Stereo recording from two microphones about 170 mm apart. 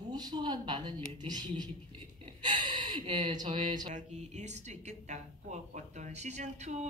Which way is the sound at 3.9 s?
45° right (ahead or behind).